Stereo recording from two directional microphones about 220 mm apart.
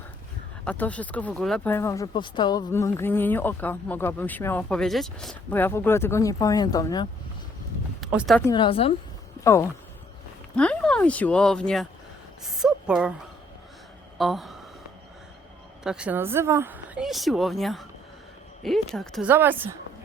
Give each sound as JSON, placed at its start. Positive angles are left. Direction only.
{"t": 0.6, "sound": "speech", "side_deg": 5}
{"t": 8.0, "sound": "speech", "side_deg": -5}
{"t": 8.4, "sound": "a woman's voice", "side_deg": 15}
{"t": 9.4, "sound": "a woman's voice", "side_deg": 15}
{"t": 14.2, "sound": "a woman's voice", "side_deg": 0}
{"t": 15.8, "sound": "a woman's voice", "side_deg": -5}